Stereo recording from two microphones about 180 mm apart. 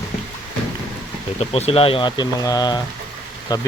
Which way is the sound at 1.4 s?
35° left (ahead or behind).